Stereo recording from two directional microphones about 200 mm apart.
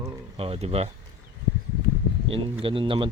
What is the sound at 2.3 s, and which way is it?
Speech, 25° right (ahead or behind).